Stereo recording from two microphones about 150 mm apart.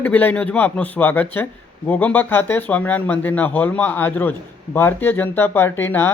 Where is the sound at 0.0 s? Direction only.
10° left (ahead or behind).